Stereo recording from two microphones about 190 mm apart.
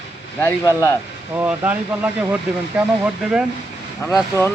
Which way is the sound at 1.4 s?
10° right (ahead or behind).